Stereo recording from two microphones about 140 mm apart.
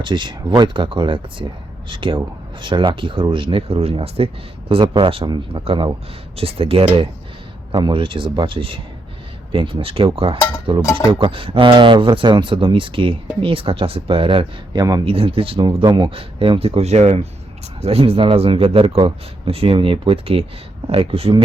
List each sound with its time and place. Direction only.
0.0 s speech: 35° right (ahead or behind)
15.0 s speech: 40° right (ahead or behind)